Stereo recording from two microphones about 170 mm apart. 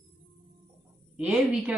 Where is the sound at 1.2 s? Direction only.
5° right (ahead or behind).